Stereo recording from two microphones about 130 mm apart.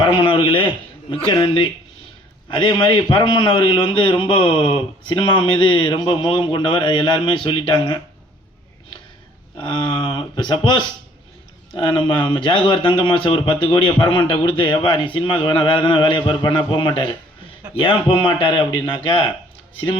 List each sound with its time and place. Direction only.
0.0 s a man's voice: 40° left (ahead or behind)
9.6 s a man's voice: 35° left (ahead or behind)